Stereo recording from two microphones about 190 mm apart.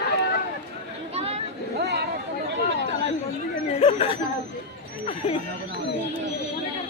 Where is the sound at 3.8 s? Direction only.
30° left (ahead or behind).